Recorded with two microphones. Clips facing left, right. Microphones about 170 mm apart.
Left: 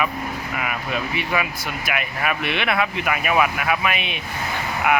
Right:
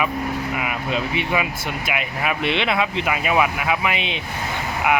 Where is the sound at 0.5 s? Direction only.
20° right (ahead or behind).